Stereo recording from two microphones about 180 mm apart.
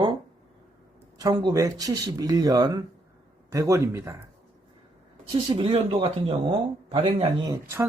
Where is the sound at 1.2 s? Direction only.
25° right (ahead or behind).